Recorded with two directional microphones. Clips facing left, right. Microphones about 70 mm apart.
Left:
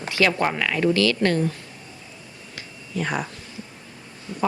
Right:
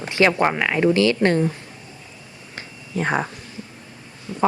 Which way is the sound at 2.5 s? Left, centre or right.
Right.